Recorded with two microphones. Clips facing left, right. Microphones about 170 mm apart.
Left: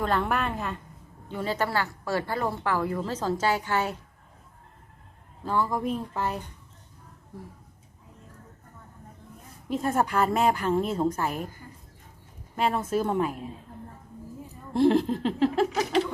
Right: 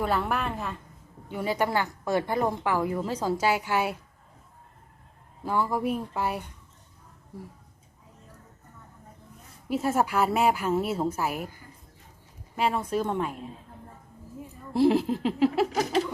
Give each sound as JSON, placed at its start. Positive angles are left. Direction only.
{"t": 0.0, "sound": "a woman's voice", "side_deg": -5}
{"t": 1.3, "sound": "a woman's voice", "side_deg": -10}
{"t": 5.5, "sound": "a woman's voice", "side_deg": -10}
{"t": 9.6, "sound": "a woman's voice", "side_deg": -5}
{"t": 12.5, "sound": "a woman's voice", "side_deg": 0}
{"t": 14.7, "sound": "a woman's voice", "side_deg": -5}